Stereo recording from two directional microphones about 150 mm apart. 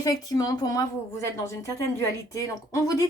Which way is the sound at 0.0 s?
25° left (ahead or behind).